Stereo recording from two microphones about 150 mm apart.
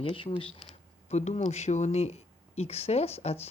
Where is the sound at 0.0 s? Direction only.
35° left (ahead or behind).